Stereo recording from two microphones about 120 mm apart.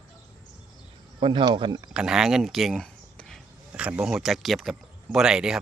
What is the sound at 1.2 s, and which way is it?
Speech, 40° right (ahead or behind).